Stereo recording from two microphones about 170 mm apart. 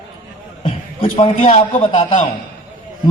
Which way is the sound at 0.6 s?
35° left (ahead or behind).